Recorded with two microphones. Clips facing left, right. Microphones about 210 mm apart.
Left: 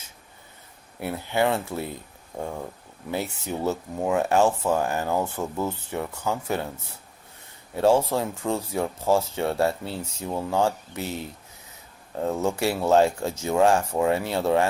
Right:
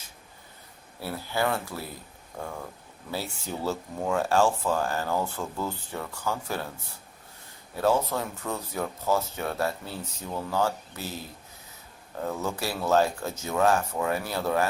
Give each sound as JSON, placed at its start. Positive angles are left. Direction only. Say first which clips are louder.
{"t": 0.9, "sound": "speech", "louder": "left 5 dB", "side_deg": 20}
{"t": 7.8, "sound": "speech", "louder": "left 5 dB", "side_deg": 30}
{"t": 12.2, "sound": "speech", "louder": "left 6 dB", "side_deg": 25}